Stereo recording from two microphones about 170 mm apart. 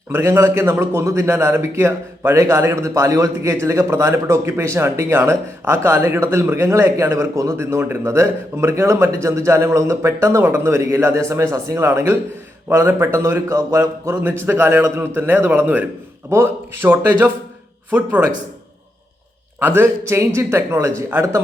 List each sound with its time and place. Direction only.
0.1 s a man's voice: 15° right (ahead or behind)
19.5 s a man's voice: 15° right (ahead or behind)